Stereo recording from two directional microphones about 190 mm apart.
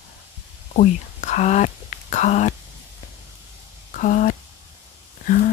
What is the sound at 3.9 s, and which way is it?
Speech, 45° left (ahead or behind).